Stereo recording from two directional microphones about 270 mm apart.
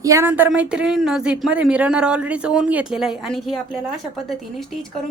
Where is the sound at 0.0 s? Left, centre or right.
Centre.